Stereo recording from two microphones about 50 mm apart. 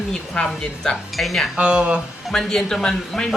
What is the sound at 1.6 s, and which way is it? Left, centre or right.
Speech, centre.